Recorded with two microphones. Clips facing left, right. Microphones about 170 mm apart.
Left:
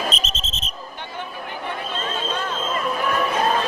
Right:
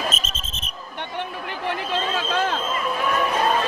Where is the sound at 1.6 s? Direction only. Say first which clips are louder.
Right 4 dB; 90° right.